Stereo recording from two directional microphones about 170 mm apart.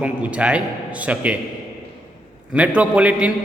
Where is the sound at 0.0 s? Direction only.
5° right (ahead or behind).